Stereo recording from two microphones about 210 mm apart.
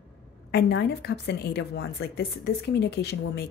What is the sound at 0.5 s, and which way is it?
A woman's voice, 55° left (ahead or behind).